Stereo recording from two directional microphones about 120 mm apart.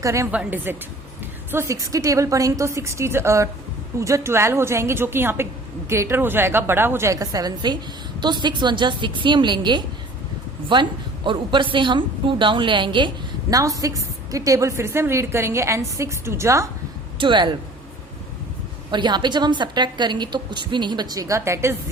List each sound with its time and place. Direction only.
0.0 s a woman's voice: 25° right (ahead or behind)
0.3 s a woman's voice: 15° right (ahead or behind); by 13.1 s 40° right (ahead or behind)
13.5 s a woman's voice: 30° right (ahead or behind)
17.2 s a woman's voice: 40° right (ahead or behind)
18.9 s a woman's voice: 40° right (ahead or behind); by 21.8 s 20° right (ahead or behind)